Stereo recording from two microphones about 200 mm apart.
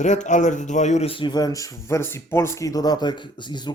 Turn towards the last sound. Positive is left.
turn(degrees=20)  # may be behind; listen again after turning